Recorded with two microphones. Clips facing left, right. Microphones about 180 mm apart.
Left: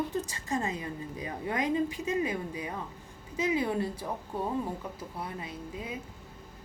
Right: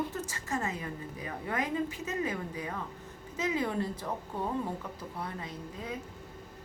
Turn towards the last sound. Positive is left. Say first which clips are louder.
# left 1 dB
turn(degrees=10)  # may be behind; listen again after turning